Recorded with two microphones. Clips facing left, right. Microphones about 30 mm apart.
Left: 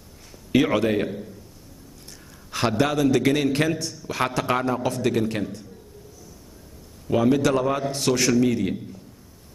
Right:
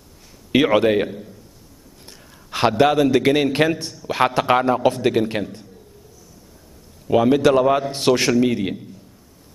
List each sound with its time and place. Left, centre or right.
0.5 s a man's voice: right
2.8 s a man's voice: right
7.1 s a man's voice: right